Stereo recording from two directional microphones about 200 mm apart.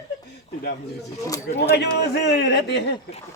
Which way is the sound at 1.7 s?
55° left (ahead or behind).